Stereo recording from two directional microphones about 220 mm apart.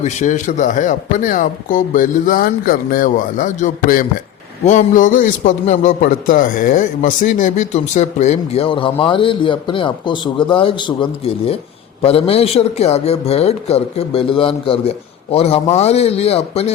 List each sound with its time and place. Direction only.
0.0 s a man's voice: 35° left (ahead or behind)